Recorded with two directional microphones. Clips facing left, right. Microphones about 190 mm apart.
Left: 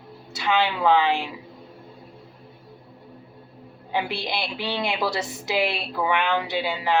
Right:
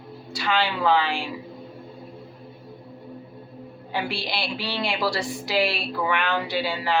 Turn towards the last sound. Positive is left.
turn(degrees=20)  # may be behind; listen again after turning